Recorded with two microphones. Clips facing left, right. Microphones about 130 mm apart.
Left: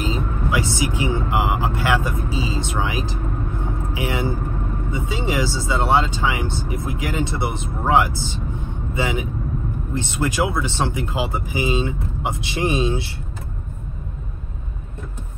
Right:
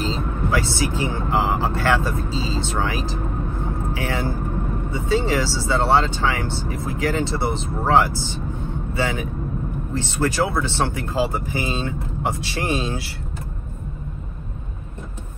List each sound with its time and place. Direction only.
0.0 s speech: 15° left (ahead or behind)